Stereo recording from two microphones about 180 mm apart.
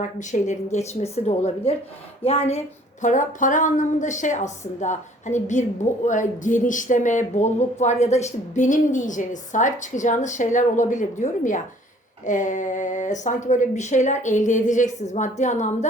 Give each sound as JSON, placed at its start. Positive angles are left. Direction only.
{"t": 0.2, "sound": "speech", "side_deg": 40}
{"t": 2.2, "sound": "speech", "side_deg": 35}
{"t": 3.0, "sound": "speech", "side_deg": 45}